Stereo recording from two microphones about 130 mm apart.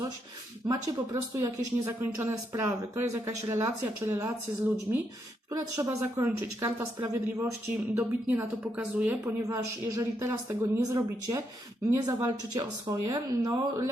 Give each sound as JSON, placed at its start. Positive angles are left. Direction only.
{"t": 0.7, "sound": "speech", "side_deg": -25}
{"t": 5.7, "sound": "speech", "side_deg": -25}
{"t": 7.9, "sound": "speech", "side_deg": -15}
{"t": 9.5, "sound": "speech", "side_deg": -25}